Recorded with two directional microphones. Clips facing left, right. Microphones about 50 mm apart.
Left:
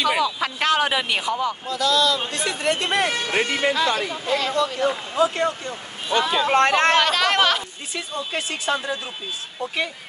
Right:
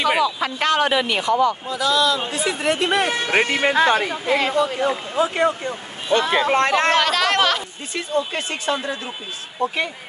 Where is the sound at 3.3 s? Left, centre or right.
Right.